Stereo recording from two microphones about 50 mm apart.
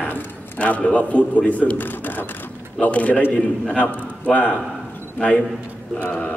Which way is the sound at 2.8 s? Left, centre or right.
Left.